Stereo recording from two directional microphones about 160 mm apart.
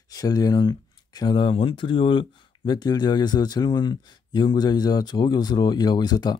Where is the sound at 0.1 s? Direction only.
25° left (ahead or behind).